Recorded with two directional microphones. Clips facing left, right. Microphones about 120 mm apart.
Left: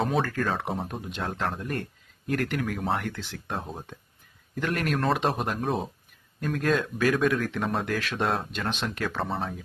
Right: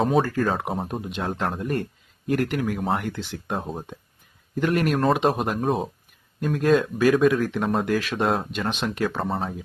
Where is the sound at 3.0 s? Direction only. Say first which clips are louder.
Right 4 dB; 20° right (ahead or behind).